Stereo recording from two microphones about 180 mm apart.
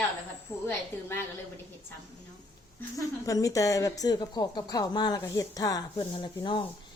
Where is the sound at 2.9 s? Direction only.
20° left (ahead or behind).